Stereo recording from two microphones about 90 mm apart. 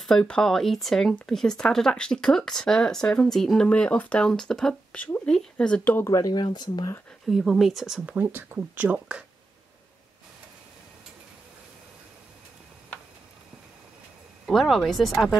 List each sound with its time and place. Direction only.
0.0 s speech: 10° left (ahead or behind)
5.9 s speech: 30° left (ahead or behind)
6.3 s speech: 55° left (ahead or behind)
7.2 s speech: centre (ahead or behind)
8.1 s speech: 20° right (ahead or behind)
14.4 s speech: centre (ahead or behind)